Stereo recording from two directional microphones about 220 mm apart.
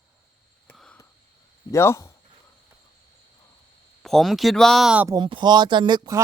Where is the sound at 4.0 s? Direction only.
Centre (ahead or behind).